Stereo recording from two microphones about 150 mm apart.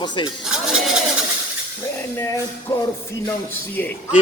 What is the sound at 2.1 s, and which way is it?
Music, 20° left (ahead or behind).